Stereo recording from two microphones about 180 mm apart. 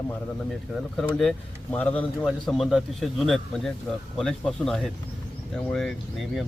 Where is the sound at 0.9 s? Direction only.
5° left (ahead or behind).